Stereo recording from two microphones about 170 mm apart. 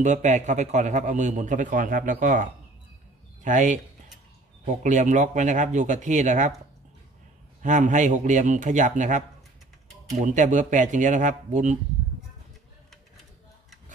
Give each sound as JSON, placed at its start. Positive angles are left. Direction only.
{"t": 0.0, "sound": "a man's voice", "side_deg": -45}
{"t": 7.6, "sound": "a man's voice", "side_deg": -45}
{"t": 10.2, "sound": "a man's voice", "side_deg": -45}